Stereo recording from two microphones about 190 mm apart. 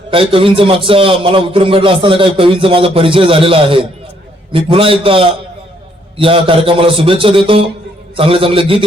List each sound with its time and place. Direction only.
0.1 s a man's voice: 30° right (ahead or behind)